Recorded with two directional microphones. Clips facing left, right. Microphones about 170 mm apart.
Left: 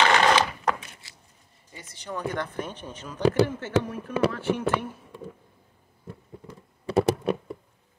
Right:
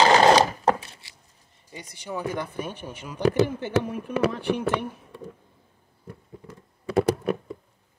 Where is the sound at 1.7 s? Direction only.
15° right (ahead or behind).